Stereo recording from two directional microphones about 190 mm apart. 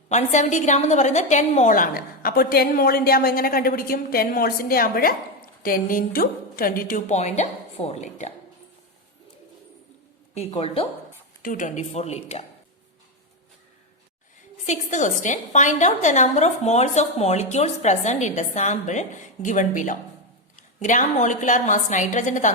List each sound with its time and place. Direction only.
0.1 s a woman's voice: 40° left (ahead or behind)
10.3 s a woman's voice: 30° left (ahead or behind)
11.4 s a woman's voice: 40° left (ahead or behind)
14.7 s a woman's voice: 40° left (ahead or behind)